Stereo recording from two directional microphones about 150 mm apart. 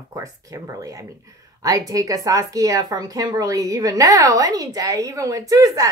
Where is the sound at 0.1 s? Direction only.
20° right (ahead or behind).